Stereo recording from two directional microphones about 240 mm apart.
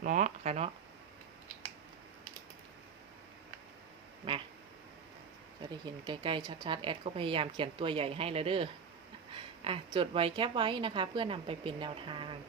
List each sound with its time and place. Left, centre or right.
0.0 s a sound: right
4.3 s duck: centre
5.8 s a woman's voice: centre